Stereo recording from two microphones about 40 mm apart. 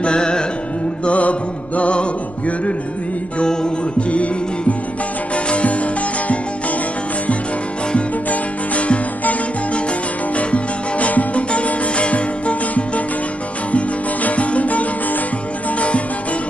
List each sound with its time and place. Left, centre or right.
0.0 s music: left
1.0 s music: left
5.5 s music: left
7.9 s music: left
10.3 s music: left